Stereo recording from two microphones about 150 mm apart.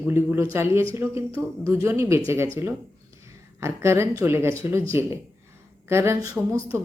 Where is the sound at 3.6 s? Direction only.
15° right (ahead or behind).